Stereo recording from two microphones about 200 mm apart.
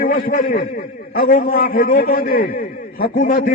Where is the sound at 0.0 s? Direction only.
40° left (ahead or behind).